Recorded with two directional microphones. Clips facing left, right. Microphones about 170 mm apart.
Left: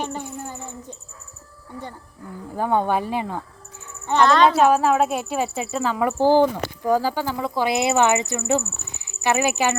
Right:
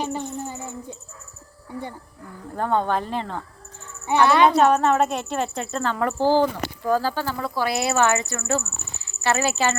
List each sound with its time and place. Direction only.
0.4 s a sound: 10° right (ahead or behind)
2.5 s speech: 10° left (ahead or behind)
4.0 s speech: 10° right (ahead or behind)
4.4 s speech: 5° left (ahead or behind)